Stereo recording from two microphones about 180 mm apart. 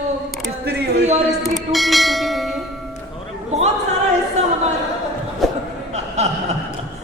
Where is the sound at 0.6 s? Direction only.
65° right (ahead or behind).